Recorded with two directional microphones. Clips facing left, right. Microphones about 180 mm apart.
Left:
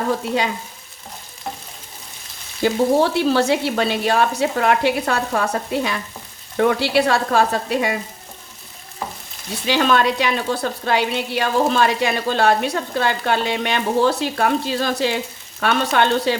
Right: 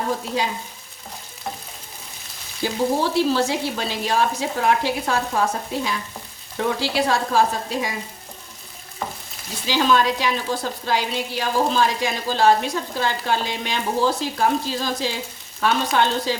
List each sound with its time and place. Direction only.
2.6 s a woman's voice: 65° left (ahead or behind)
9.6 s a woman's voice: 65° left (ahead or behind)